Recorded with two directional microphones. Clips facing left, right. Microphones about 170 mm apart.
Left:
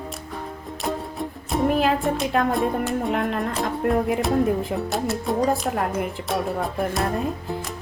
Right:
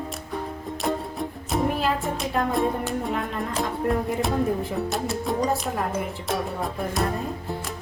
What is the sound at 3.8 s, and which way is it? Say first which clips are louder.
Speech: left 4 dB; 65° left (ahead or behind).